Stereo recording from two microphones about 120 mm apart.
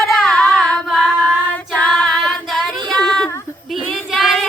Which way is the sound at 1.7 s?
5° left (ahead or behind).